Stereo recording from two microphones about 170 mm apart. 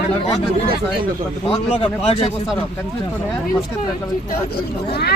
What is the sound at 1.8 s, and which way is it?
Speech, 35° left (ahead or behind).